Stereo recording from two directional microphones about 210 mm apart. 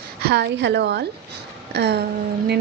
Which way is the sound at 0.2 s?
50° right (ahead or behind).